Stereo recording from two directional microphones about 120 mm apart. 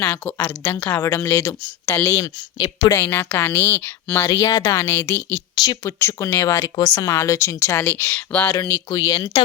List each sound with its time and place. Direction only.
0.0 s a woman's voice: 15° left (ahead or behind)
2.1 s speech: 35° left (ahead or behind)
2.6 s a woman's voice: 45° left (ahead or behind)
2.9 s speech: 20° left (ahead or behind)
8.9 s speech: 35° left (ahead or behind)